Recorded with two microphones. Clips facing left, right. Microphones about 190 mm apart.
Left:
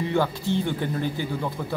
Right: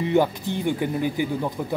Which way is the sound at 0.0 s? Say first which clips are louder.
Right 3 dB; 15° right (ahead or behind).